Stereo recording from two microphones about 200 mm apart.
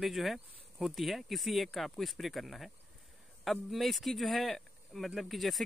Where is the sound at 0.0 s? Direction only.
Centre (ahead or behind).